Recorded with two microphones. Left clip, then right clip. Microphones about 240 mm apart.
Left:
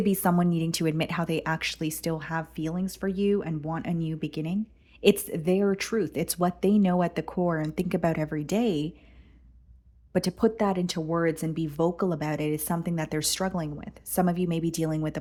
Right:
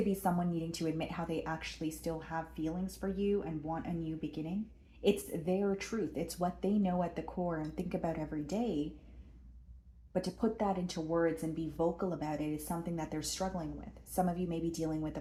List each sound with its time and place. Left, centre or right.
0.2 s speech: left
10.1 s speech: left